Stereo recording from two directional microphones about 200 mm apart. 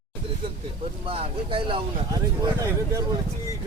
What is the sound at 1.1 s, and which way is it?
Speech, 30° right (ahead or behind).